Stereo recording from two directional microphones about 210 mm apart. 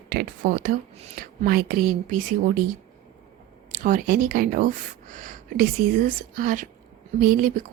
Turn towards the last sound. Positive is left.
turn(degrees=-40)  # may be behind; listen again after turning